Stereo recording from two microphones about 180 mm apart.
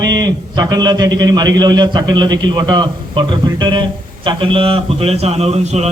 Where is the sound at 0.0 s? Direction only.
20° right (ahead or behind).